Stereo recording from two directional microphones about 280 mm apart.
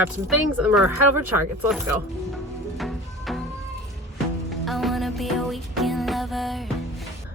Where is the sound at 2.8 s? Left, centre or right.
Centre.